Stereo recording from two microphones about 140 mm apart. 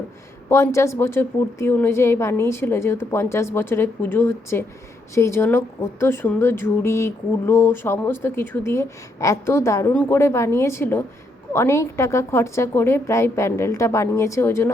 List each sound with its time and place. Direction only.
0.5 s a woman's voice: 20° left (ahead or behind)
6.3 s a sound: 15° left (ahead or behind)
9.9 s a woman's voice: 15° left (ahead or behind)